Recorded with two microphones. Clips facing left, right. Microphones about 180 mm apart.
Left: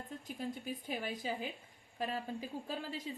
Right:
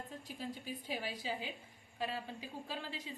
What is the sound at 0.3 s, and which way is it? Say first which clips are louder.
A woman's voice: left 3 dB; 50° left (ahead or behind).